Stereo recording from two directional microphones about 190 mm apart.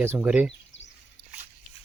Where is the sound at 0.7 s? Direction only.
80° left.